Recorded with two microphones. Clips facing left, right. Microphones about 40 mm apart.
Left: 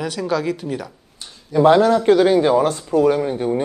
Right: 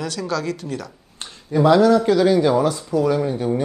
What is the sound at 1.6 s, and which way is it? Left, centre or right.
Speech, left.